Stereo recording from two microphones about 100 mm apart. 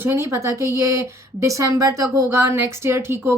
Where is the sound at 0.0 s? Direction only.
25° right (ahead or behind).